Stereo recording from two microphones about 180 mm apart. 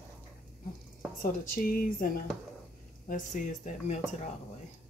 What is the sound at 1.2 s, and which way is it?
Speech, 50° left (ahead or behind).